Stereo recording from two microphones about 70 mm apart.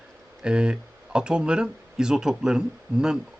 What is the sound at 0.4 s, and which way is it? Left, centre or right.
Speech, centre.